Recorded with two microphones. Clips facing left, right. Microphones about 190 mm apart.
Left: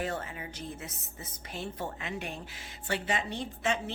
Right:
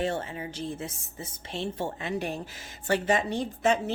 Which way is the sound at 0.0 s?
30° right (ahead or behind).